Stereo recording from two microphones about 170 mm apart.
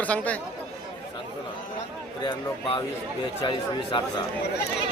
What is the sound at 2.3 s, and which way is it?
Speech, 25° left (ahead or behind).